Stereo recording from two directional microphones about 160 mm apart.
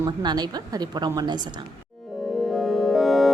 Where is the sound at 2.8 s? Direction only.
Centre (ahead or behind).